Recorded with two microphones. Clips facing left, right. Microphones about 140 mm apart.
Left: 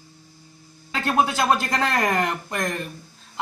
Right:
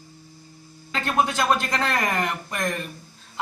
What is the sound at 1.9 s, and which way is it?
Speech, 35° left (ahead or behind).